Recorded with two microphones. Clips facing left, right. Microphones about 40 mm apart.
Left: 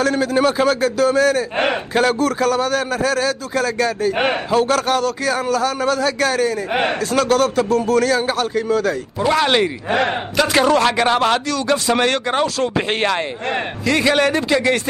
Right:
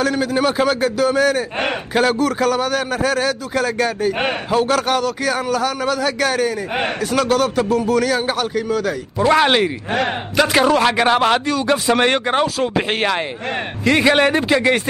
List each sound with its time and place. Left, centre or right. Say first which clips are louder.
0.0 s a man's voice: left 1 dB; centre
8.5 s a man's voice: left 4 dB; centre
8.8 s a man's voice: right 1 dB; centre
9.8 s a man's voice: left 2 dB; centre
10.5 s a man's voice: left 1 dB; centre
13.8 s a man's voice: right 2 dB; right